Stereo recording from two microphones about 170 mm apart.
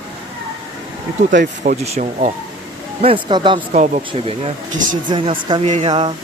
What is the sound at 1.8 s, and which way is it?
Speech, 40° right (ahead or behind).